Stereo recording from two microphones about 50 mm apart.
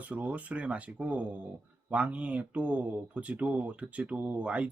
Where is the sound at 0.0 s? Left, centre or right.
Right.